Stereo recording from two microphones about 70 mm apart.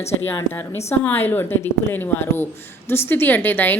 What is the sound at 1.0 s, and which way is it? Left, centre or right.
A woman's voice, left.